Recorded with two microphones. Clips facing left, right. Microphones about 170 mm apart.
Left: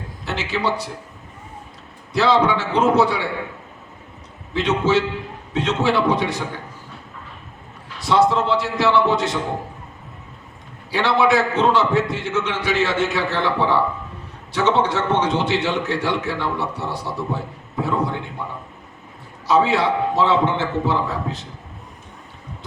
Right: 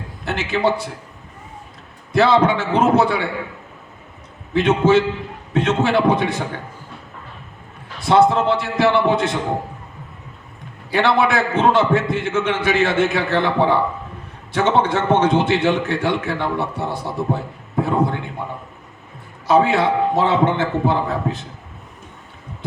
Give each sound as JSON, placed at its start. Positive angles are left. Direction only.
{"t": 0.3, "sound": "a man's voice", "side_deg": -55}
{"t": 2.1, "sound": "a man's voice", "side_deg": -55}
{"t": 4.5, "sound": "a man's voice", "side_deg": -55}
{"t": 8.0, "sound": "a man's voice", "side_deg": -55}
{"t": 10.9, "sound": "a man's voice", "side_deg": -55}
{"t": 19.5, "sound": "a man's voice", "side_deg": -55}